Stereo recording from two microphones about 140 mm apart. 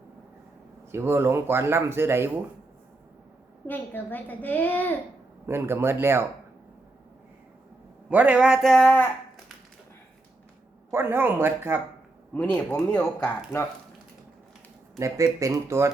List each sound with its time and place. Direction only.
0.9 s speech: 20° right (ahead or behind)
3.7 s a child's voice: 15° left (ahead or behind)
5.5 s speech: 15° right (ahead or behind)
8.1 s speech: 10° right (ahead or behind); by 9.0 s 5° left (ahead or behind)
10.9 s speech: 15° right (ahead or behind)
12.3 s a child's voice: 10° left (ahead or behind)
14.9 s speech: 20° right (ahead or behind)